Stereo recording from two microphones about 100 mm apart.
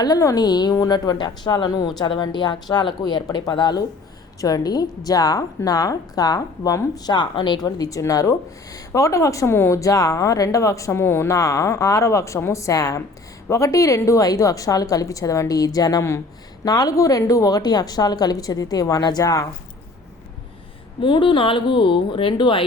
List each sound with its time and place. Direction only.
0.0 s speech: 35° left (ahead or behind)
21.0 s speech: 55° left (ahead or behind)